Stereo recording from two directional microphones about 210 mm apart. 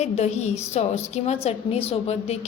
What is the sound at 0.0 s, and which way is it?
A woman's voice, 30° left (ahead or behind).